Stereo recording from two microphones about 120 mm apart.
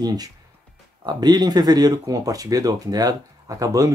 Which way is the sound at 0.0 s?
35° right (ahead or behind).